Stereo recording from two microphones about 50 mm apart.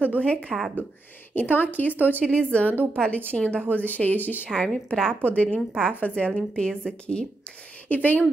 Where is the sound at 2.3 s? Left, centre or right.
Left.